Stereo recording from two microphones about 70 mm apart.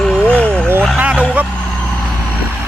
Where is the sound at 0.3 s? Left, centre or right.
Centre.